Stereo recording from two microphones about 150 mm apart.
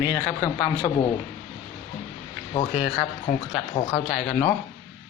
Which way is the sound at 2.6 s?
40° left (ahead or behind).